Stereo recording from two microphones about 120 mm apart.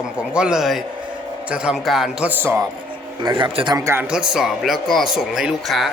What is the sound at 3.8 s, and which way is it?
Speech, 25° right (ahead or behind).